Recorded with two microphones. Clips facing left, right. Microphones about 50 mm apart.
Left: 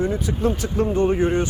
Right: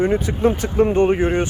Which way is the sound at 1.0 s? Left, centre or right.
Right.